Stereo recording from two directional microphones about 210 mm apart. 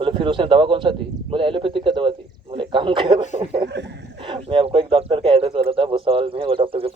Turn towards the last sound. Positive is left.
turn(degrees=-25)  # may be behind; listen again after turning